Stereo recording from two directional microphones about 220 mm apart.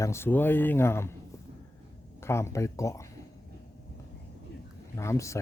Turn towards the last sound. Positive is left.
turn(degrees=15)  # may be behind; listen again after turning